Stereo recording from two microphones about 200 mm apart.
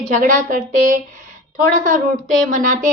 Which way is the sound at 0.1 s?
40° right (ahead or behind).